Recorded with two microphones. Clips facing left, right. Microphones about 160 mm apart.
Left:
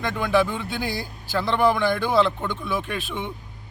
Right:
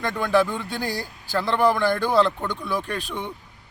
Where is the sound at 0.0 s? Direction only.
10° left (ahead or behind).